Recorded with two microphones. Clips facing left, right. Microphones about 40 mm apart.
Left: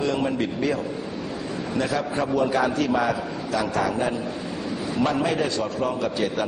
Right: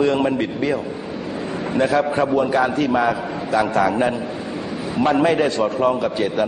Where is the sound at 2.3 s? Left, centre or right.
Right.